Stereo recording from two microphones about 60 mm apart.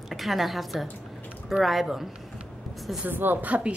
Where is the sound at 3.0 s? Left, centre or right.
Right.